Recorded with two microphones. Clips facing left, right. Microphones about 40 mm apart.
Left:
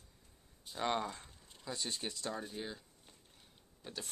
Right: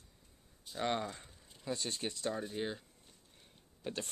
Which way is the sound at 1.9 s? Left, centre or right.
Right.